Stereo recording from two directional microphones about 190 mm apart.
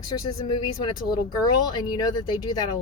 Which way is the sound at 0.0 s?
25° left (ahead or behind).